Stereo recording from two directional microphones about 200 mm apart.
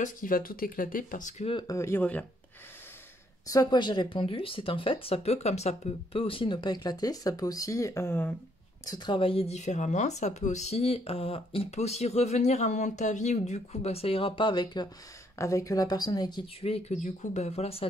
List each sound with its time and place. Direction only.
0.0 s speech: 45° left (ahead or behind)
1.5 s speech: 20° left (ahead or behind)
3.4 s speech: 20° left (ahead or behind)
8.8 s speech: 20° left (ahead or behind)